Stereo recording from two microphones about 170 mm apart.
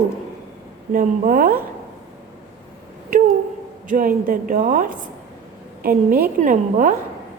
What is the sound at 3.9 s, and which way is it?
A woman's voice, 55° right (ahead or behind).